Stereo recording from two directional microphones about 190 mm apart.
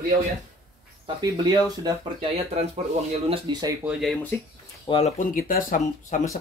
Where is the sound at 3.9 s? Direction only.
Centre (ahead or behind).